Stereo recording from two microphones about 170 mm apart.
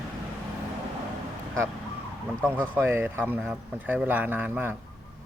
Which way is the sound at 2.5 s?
10° right (ahead or behind).